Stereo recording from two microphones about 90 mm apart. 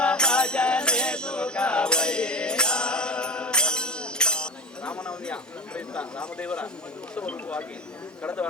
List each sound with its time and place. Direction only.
0.0 s music: 10° left (ahead or behind)
7.2 s speech: 15° left (ahead or behind)